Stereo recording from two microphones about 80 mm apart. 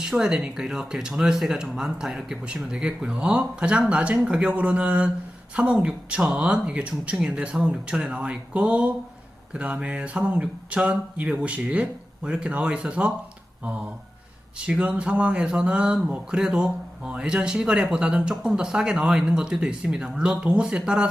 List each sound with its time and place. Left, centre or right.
0.0 s speech: centre
14.7 s speech: centre